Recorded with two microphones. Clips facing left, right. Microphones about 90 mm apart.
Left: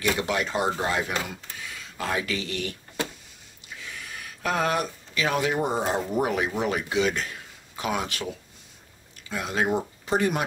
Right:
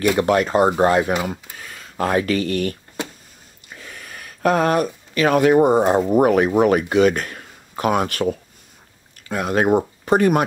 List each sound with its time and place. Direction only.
0.2 s speech: 50° right (ahead or behind)